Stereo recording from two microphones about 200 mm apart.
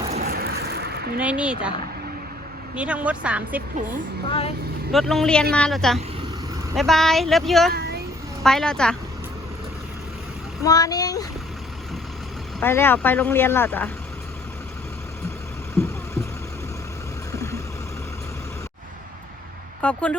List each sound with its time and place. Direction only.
0.2 s a sound: 50° right (ahead or behind)
1.2 s speech: 5° right (ahead or behind)
2.7 s speech: 5° right (ahead or behind)
4.3 s speech: 30° left (ahead or behind)
4.9 s speech: centre (ahead or behind)
7.7 s a sound: 50° right (ahead or behind)
8.4 s speech: 5° left (ahead or behind)
10.6 s speech: 20° left (ahead or behind)
12.5 s speech: 10° left (ahead or behind)
17.3 s vehicle: 15° left (ahead or behind)
19.8 s speech: 5° left (ahead or behind)